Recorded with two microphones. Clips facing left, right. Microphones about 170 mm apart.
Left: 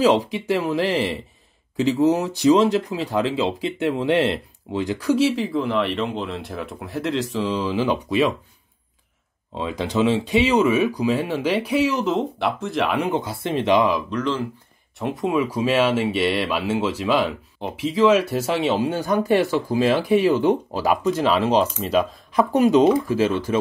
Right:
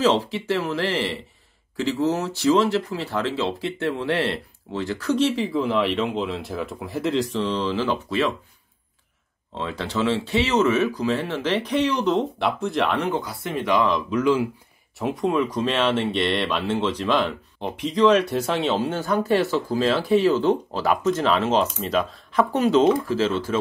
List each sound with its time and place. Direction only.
0.0 s speech: 15° left (ahead or behind)
9.6 s speech: 15° left (ahead or behind)
13.2 s speech: 25° left (ahead or behind)
14.1 s speech: 10° right (ahead or behind); by 23.6 s 15° left (ahead or behind)